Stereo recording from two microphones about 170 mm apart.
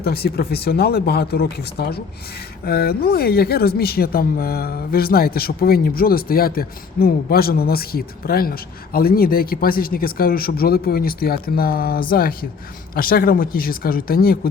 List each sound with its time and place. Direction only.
0.0 s speech: 65° left (ahead or behind)